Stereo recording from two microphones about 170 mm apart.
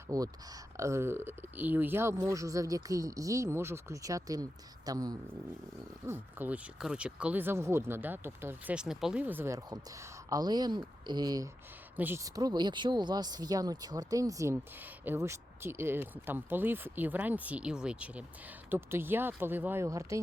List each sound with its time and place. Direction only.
0.1 s speech: 20° right (ahead or behind)
6.1 s speech: 10° right (ahead or behind)